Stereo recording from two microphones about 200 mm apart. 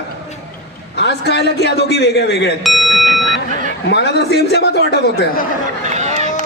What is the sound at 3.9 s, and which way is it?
A man's voice, 55° left (ahead or behind).